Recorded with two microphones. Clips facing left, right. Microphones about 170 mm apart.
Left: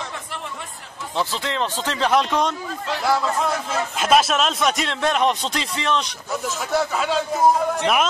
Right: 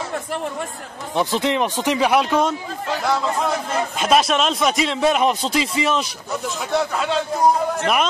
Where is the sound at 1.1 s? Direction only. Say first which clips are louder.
Right 5 dB; 20° right (ahead or behind).